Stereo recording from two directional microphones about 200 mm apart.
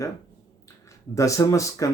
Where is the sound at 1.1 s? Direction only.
15° left (ahead or behind).